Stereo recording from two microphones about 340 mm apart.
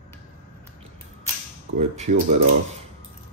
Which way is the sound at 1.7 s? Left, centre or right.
Centre.